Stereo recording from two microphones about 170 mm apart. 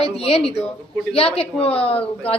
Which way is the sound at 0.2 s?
35° left (ahead or behind).